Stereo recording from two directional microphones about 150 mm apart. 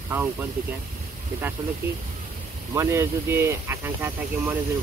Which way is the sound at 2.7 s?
20° right (ahead or behind).